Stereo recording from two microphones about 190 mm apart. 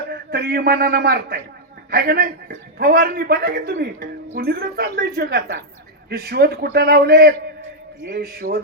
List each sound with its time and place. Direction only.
0.1 s a man's voice: 60° right (ahead or behind)